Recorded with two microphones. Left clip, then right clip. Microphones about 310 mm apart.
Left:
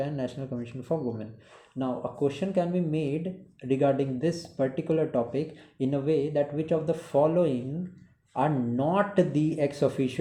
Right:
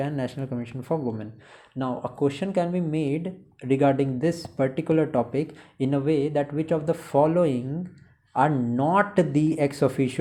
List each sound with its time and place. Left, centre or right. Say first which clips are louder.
0.0 s speech: right 3 dB; centre